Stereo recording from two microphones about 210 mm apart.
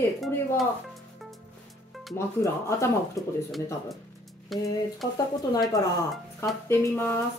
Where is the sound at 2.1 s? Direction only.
15° left (ahead or behind).